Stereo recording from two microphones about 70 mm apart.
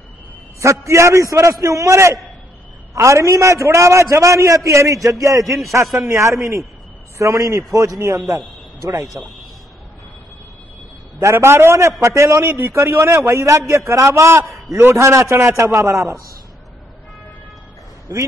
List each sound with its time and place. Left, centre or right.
0.6 s a man's voice: right
11.1 s a man's voice: right